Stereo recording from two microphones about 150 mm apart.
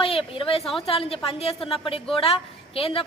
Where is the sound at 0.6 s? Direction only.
Centre (ahead or behind).